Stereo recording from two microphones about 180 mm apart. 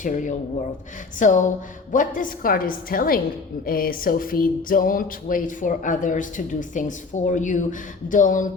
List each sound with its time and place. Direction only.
0.0 s speech: 45° left (ahead or behind)